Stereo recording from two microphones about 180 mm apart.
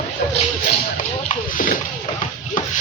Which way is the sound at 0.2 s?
45° left (ahead or behind).